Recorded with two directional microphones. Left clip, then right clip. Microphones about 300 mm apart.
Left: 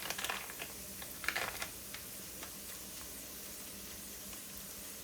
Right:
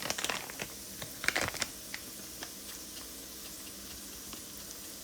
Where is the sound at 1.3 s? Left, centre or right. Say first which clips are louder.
Right 6 dB; right.